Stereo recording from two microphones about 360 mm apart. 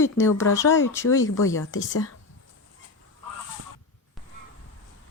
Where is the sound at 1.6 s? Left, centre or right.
Left.